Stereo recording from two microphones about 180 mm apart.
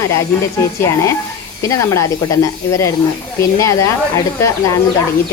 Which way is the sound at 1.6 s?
15° left (ahead or behind).